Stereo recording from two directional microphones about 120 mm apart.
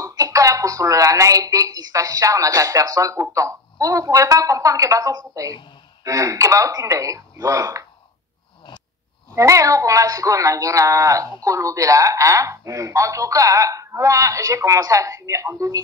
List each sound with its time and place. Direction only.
0.0 s a woman's voice: 30° right (ahead or behind)
9.3 s a woman's voice: 25° right (ahead or behind)